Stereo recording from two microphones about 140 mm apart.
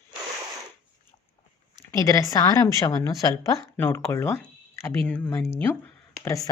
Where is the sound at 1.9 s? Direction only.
25° left (ahead or behind).